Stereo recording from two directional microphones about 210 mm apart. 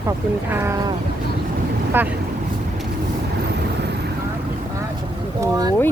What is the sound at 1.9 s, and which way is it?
Speech, 10° right (ahead or behind).